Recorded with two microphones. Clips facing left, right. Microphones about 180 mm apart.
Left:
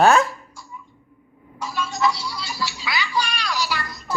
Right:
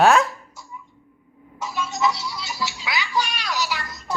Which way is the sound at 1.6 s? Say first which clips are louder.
Left 1 dB; 20° right (ahead or behind).